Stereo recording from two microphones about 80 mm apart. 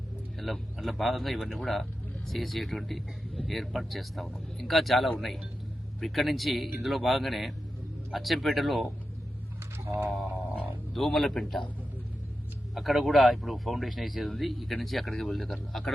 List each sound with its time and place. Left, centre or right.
0.3 s speech: centre
9.8 s speech: right
10.9 s speech: centre
12.7 s speech: centre